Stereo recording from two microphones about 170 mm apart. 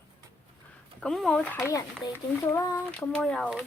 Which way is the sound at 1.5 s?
20° left (ahead or behind).